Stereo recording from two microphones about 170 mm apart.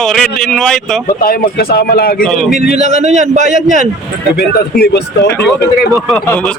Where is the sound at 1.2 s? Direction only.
60° left (ahead or behind).